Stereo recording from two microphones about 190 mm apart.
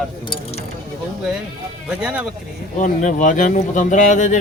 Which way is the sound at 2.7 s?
40° left (ahead or behind).